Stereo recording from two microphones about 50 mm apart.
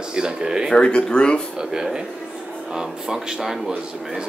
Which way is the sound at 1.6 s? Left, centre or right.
Centre.